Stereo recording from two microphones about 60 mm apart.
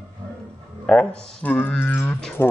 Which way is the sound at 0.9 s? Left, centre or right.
Left.